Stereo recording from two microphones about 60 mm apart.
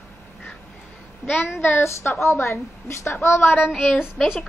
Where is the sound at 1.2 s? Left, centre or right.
Left.